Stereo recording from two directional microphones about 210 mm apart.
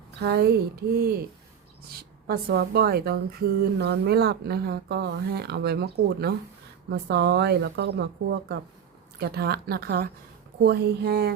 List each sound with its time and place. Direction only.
0.2 s a woman's voice: 50° right (ahead or behind)